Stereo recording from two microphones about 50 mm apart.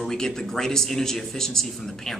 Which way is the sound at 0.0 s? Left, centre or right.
Centre.